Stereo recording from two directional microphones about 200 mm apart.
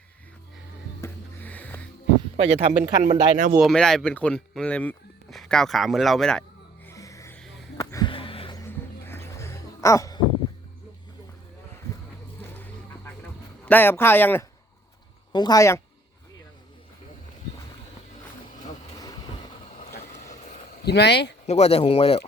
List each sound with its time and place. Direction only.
1.0 s music: 10° left (ahead or behind)
2.3 s speech: 30° right (ahead or behind)
3.6 s speech: centre (ahead or behind)
6.8 s music: 15° left (ahead or behind)
12.4 s music: 10° left (ahead or behind)
13.7 s speech: 10° left (ahead or behind)
15.3 s speech: 20° left (ahead or behind)
18.9 s train: 20° left (ahead or behind)
20.8 s speech: 55° left (ahead or behind)
21.4 s speech: 30° left (ahead or behind)